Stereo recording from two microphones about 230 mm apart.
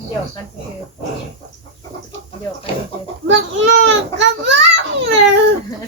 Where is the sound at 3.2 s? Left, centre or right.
Right.